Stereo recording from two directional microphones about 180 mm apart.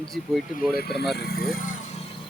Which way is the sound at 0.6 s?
55° left (ahead or behind).